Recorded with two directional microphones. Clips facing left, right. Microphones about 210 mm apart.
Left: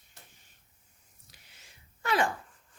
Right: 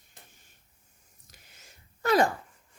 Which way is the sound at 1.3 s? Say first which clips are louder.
Right 3 dB; 40° right (ahead or behind).